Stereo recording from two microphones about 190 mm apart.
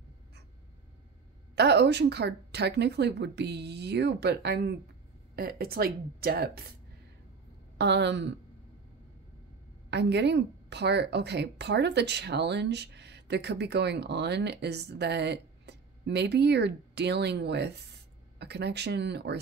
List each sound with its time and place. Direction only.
1.5 s a woman's voice: 60° right (ahead or behind)
7.7 s a woman's voice: 65° right (ahead or behind)
9.8 s a woman's voice: 65° right (ahead or behind)